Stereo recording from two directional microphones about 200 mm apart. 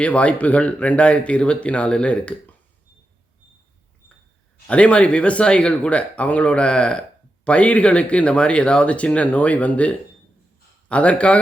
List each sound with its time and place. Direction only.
0.0 s speech: 5° left (ahead or behind)
4.6 s speech: 5° left (ahead or behind)